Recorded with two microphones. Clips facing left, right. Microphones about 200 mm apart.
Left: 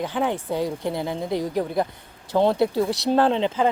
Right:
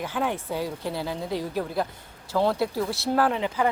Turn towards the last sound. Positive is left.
turn(degrees=25)  # may be behind; listen again after turning